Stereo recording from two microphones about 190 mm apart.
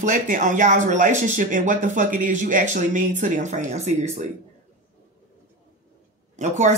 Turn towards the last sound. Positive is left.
turn(degrees=-40)  # may be behind; listen again after turning